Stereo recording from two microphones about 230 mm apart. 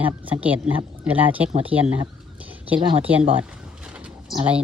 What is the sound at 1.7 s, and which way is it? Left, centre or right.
Speech, centre.